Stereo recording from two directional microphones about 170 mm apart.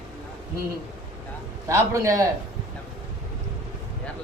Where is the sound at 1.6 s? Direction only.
20° right (ahead or behind).